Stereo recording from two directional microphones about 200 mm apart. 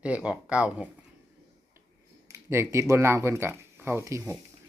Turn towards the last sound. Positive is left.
turn(degrees=-15)  # may be behind; listen again after turning